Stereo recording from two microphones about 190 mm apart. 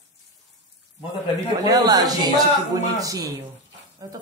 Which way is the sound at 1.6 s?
20° right (ahead or behind).